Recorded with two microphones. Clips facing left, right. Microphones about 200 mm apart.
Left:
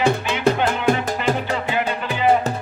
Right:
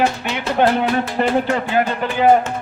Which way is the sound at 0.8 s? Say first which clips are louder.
Left 1 dB; 45° left (ahead or behind).